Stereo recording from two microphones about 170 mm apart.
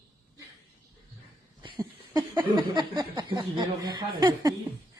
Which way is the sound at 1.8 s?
25° right (ahead or behind).